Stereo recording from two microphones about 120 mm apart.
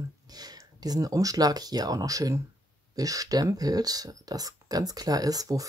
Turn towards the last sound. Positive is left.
turn(degrees=-30)  # may be behind; listen again after turning